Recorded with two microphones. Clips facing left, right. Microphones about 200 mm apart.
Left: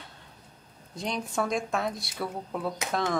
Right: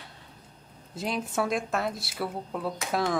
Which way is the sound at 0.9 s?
5° right (ahead or behind).